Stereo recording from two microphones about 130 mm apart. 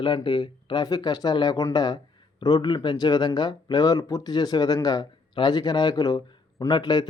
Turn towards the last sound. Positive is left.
turn(degrees=30)  # may be behind; listen again after turning